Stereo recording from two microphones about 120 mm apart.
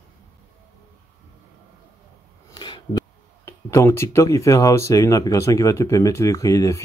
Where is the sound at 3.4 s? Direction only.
25° left (ahead or behind).